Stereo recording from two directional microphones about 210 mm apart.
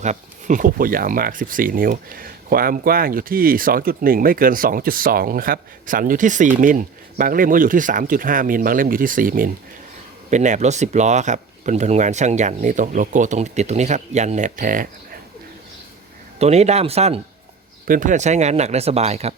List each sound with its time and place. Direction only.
0.0 s speech: 35° right (ahead or behind)
16.4 s speech: 30° right (ahead or behind)
17.8 s speech: 40° right (ahead or behind)